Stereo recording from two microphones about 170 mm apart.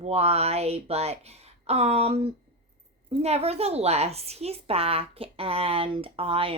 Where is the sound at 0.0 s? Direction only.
40° right (ahead or behind).